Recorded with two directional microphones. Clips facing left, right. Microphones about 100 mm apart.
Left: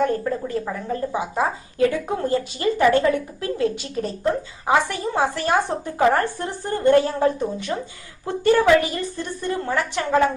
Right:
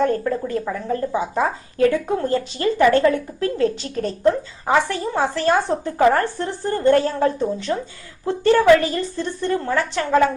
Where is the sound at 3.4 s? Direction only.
40° right (ahead or behind).